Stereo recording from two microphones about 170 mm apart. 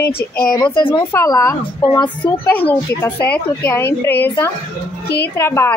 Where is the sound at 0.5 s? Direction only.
30° left (ahead or behind).